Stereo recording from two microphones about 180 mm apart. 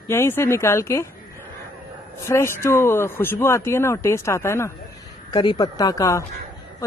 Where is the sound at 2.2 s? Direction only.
15° left (ahead or behind).